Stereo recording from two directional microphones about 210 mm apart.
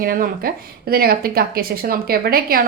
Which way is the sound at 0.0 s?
45° right (ahead or behind).